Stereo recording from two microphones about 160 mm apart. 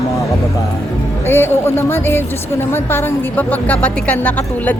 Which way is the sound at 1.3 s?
15° left (ahead or behind).